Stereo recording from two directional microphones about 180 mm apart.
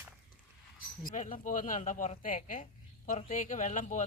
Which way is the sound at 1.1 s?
40° left (ahead or behind).